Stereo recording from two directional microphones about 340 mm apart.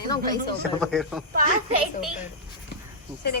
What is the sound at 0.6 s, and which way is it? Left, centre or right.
Speech, centre.